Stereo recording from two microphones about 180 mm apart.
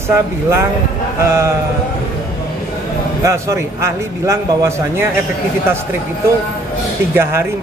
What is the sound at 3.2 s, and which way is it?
A man's voice, 15° right (ahead or behind).